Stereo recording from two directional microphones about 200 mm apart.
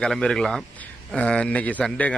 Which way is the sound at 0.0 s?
5° left (ahead or behind).